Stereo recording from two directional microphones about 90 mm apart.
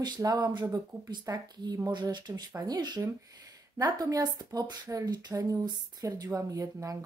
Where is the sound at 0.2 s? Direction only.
50° right (ahead or behind).